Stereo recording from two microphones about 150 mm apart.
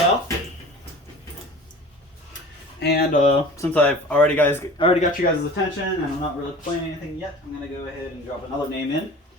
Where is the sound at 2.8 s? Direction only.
90° left; by 3.3 s 60° left (ahead or behind).